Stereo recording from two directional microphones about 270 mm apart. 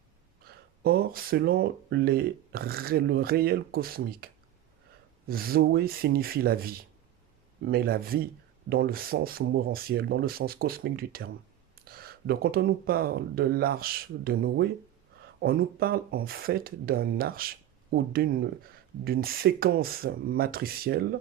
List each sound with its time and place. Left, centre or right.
0.4 s speech: right
5.3 s speech: right